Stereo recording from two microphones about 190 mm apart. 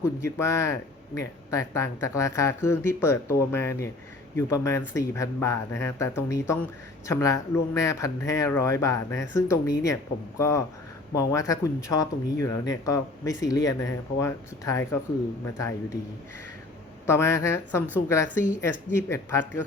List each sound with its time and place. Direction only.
0.0 s speech: 15° left (ahead or behind)
17.1 s speech: 15° left (ahead or behind)